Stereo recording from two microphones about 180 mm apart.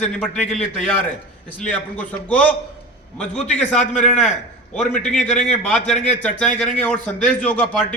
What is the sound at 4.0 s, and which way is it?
Speech, 40° left (ahead or behind).